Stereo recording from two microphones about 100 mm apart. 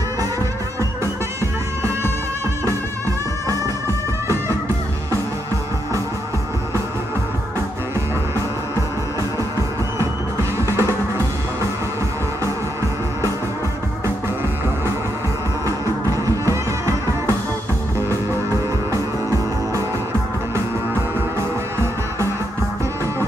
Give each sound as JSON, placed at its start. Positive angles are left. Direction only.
{"t": 10.6, "sound": "music", "side_deg": -30}
{"t": 15.6, "sound": "music", "side_deg": -35}
{"t": 20.5, "sound": "music", "side_deg": -25}